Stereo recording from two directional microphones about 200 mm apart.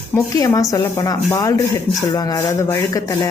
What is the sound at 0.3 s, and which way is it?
Speech, 15° left (ahead or behind).